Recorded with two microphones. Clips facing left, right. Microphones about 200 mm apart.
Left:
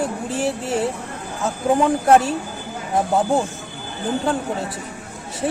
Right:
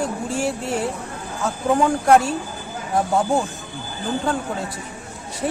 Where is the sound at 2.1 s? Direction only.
Centre (ahead or behind).